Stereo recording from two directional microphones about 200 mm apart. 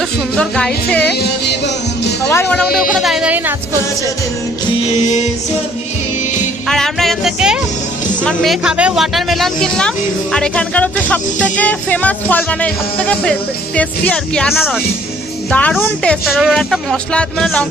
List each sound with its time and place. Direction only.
0.3 s speech: 5° left (ahead or behind)
1.2 s music: 60° left (ahead or behind)
2.3 s speech: 10° left (ahead or behind); by 3.5 s 10° right (ahead or behind)
6.7 s music: centre (ahead or behind)
8.2 s speech: 5° left (ahead or behind)